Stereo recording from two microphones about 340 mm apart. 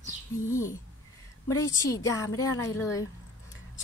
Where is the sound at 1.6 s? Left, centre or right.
Centre.